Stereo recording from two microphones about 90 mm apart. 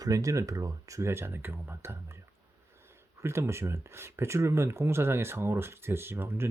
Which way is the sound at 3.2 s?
30° right (ahead or behind).